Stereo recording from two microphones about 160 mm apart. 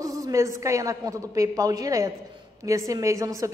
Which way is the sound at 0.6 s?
20° right (ahead or behind).